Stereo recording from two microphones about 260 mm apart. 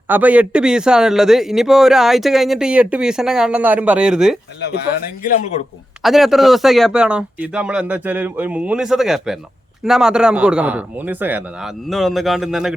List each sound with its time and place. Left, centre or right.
0.1 s a man's voice: centre
5.2 s speech: left
6.0 s a man's voice: centre